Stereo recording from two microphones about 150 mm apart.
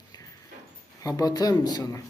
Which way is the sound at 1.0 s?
25° left (ahead or behind).